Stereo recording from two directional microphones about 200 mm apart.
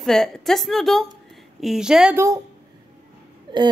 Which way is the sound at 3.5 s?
20° right (ahead or behind).